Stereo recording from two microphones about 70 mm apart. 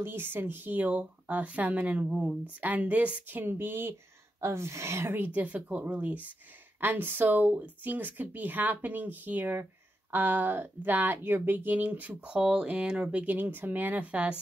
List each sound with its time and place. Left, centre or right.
0.0 s speech: right
4.4 s speech: right; by 14.3 s centre